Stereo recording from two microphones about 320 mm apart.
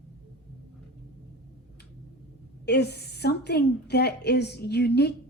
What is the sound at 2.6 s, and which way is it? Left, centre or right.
A woman's voice, left.